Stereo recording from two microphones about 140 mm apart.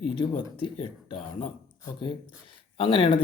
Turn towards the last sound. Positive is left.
turn(degrees=40)  # may be behind; listen again after turning